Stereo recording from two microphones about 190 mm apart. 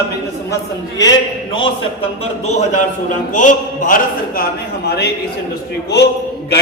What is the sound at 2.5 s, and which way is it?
A man's voice, 40° left (ahead or behind).